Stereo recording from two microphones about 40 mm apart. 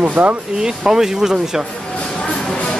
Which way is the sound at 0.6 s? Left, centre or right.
Centre.